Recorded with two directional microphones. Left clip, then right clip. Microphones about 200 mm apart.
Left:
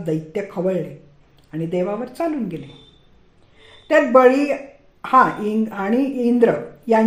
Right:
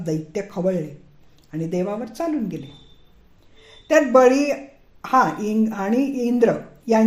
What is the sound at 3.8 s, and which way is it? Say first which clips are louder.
Speech: left 1 dB; 35° right (ahead or behind).